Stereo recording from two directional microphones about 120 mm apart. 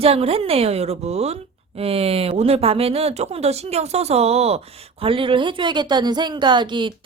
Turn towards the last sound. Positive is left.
turn(degrees=-40)  # may be behind; listen again after turning